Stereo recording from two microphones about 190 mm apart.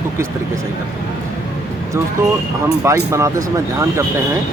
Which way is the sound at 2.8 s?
15° right (ahead or behind).